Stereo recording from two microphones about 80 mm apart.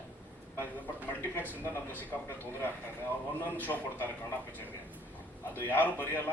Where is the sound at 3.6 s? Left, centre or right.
Left.